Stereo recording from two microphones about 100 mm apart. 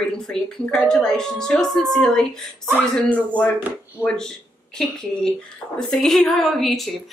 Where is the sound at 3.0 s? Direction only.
15° left (ahead or behind).